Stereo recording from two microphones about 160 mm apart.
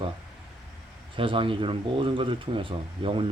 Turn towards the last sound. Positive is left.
turn(degrees=-30)  # may be behind; listen again after turning